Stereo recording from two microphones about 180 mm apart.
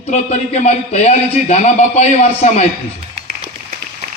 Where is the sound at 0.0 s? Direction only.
40° left (ahead or behind).